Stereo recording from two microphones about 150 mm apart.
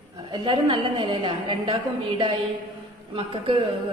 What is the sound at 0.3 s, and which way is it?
A woman's voice, 35° right (ahead or behind).